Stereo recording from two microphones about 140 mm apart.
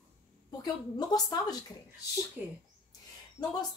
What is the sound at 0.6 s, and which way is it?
Speech, 30° left (ahead or behind).